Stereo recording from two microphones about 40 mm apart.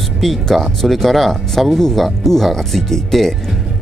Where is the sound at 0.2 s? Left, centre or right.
Centre.